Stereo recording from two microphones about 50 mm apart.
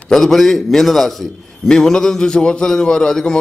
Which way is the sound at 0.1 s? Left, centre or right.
Centre.